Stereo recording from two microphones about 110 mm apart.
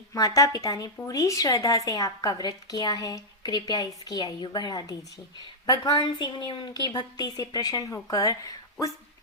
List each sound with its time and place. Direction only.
0.1 s a woman's voice: 35° left (ahead or behind)